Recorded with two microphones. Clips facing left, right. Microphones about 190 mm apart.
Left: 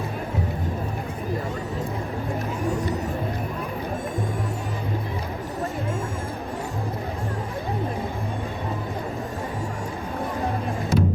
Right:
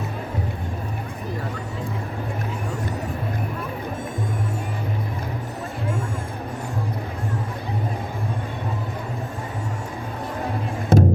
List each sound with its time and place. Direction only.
10.9 s music: 55° right (ahead or behind)